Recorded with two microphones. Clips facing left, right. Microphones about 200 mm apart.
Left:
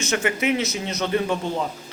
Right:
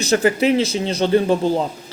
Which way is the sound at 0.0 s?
35° right (ahead or behind).